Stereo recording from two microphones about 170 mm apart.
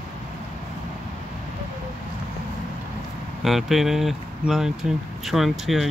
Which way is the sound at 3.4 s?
Centre (ahead or behind).